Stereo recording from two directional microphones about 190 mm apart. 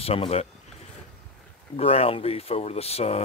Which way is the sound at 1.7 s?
30° left (ahead or behind).